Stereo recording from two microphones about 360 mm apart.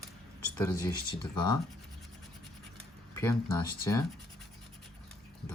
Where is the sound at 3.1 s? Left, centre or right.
Centre.